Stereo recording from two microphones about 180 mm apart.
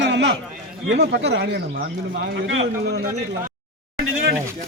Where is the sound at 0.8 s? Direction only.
70° right (ahead or behind).